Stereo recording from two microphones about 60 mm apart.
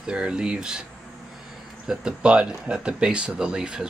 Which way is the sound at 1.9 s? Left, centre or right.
Centre.